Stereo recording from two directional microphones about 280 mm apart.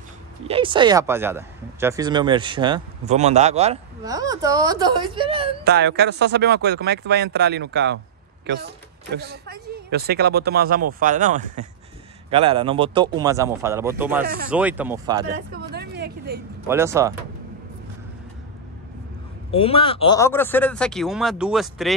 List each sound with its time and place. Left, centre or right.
0.5 s speech: centre
5.6 s speech: right; by 15.2 s centre
15.5 s vehicle: right
16.6 s speech: centre
19.5 s speech: centre